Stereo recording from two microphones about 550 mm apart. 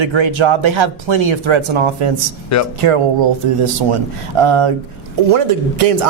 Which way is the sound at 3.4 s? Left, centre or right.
Right.